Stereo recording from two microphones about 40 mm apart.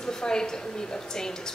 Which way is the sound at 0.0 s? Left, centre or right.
Centre.